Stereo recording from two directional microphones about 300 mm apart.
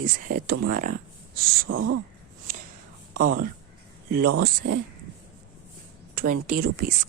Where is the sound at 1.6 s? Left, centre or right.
Right.